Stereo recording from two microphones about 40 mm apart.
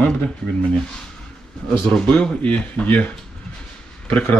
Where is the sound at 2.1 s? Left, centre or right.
Left.